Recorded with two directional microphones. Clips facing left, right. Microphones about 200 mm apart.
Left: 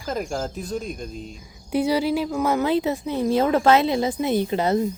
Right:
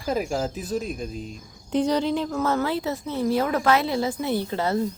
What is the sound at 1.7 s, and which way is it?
A woman's voice, 10° left (ahead or behind).